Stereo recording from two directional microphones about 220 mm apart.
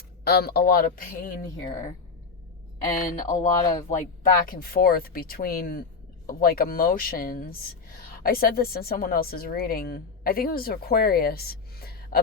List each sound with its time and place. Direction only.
0.3 s speech: 45° left (ahead or behind)
3.3 s speech: 15° left (ahead or behind)
3.8 s speech: 35° left (ahead or behind)